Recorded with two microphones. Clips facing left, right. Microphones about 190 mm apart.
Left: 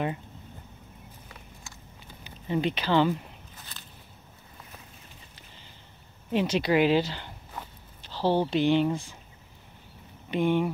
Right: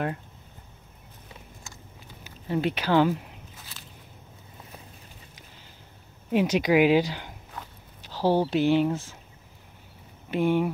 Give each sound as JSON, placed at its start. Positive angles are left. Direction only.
{"t": 2.2, "sound": "speech", "side_deg": -5}
{"t": 6.3, "sound": "speech", "side_deg": -10}
{"t": 10.3, "sound": "speech", "side_deg": -5}